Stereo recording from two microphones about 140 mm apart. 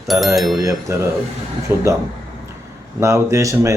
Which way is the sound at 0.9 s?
20° right (ahead or behind).